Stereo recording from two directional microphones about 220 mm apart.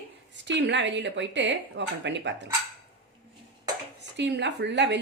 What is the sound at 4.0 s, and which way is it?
Speech, 55° right (ahead or behind).